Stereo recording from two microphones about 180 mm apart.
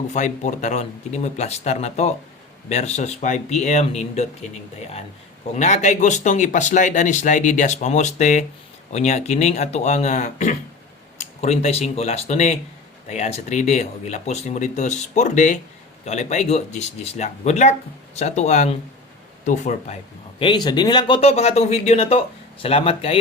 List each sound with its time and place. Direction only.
0.1 s speech: 40° left (ahead or behind)
5.5 s speech: 40° left (ahead or behind)
20.4 s speech: 25° left (ahead or behind)